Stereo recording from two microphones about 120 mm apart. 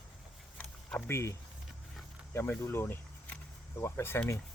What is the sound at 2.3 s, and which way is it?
Speech, 15° left (ahead or behind).